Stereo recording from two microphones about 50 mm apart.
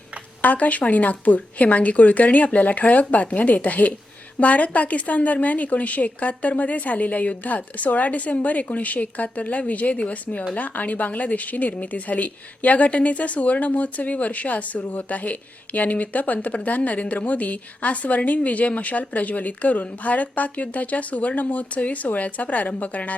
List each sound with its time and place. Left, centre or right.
0.4 s a woman's voice: left